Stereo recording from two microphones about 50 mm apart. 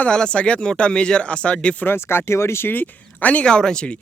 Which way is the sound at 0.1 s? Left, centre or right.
Centre.